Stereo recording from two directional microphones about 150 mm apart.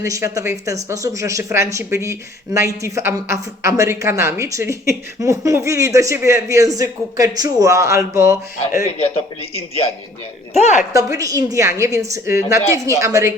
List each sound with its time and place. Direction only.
0.0 s speech: 20° right (ahead or behind)
9.0 s a man's voice: 40° left (ahead or behind)
10.9 s speech: 20° right (ahead or behind)